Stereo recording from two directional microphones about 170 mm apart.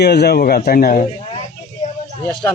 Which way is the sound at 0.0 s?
75° left (ahead or behind).